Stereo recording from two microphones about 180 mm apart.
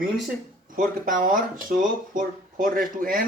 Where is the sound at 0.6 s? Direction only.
50° right (ahead or behind).